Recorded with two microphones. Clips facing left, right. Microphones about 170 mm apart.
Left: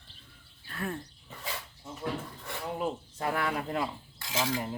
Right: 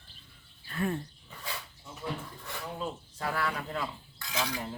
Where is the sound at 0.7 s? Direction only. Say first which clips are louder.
Right 4 dB; centre (ahead or behind).